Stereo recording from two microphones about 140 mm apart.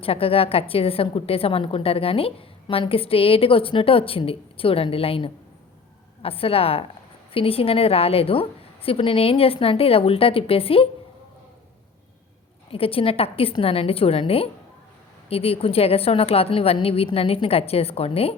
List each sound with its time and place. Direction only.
0.0 s a woman's voice: 40° left (ahead or behind)
12.7 s a woman's voice: 40° left (ahead or behind)